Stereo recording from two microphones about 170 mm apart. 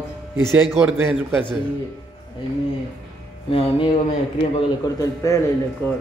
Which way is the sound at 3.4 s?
35° left (ahead or behind).